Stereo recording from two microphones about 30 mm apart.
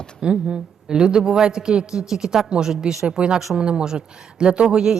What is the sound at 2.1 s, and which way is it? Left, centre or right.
A man's voice, centre.